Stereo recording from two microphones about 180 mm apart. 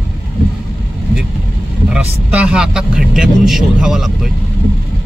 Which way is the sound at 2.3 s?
5° right (ahead or behind).